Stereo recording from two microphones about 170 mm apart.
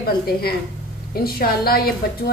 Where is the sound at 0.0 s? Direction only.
65° left (ahead or behind).